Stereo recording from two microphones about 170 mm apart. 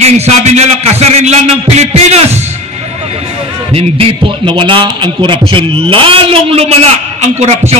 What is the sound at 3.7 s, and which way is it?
A man's voice, 35° right (ahead or behind).